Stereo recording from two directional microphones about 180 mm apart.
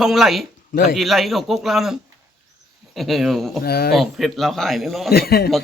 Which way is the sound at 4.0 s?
Centre (ahead or behind).